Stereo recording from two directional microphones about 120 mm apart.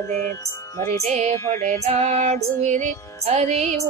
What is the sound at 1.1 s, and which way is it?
Female singing, 80° right.